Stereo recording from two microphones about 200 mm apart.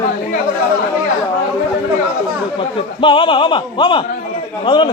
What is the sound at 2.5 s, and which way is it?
Speech, 25° left (ahead or behind).